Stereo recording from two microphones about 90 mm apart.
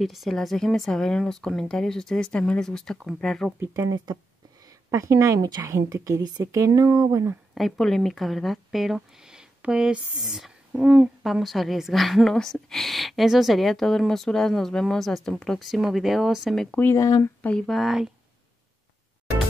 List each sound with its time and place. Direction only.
0.0 s a woman's voice: centre (ahead or behind)
3.7 s speech: 50° right (ahead or behind)
4.9 s a woman's voice: 35° right (ahead or behind)
7.5 s a woman's voice: centre (ahead or behind)
16.9 s speech: 40° left (ahead or behind)
17.4 s speech: 15° left (ahead or behind)
17.6 s a woman's voice: centre (ahead or behind)